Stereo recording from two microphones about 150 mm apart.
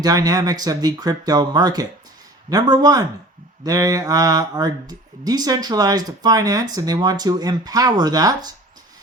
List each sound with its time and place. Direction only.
0.0 s speech: 25° right (ahead or behind)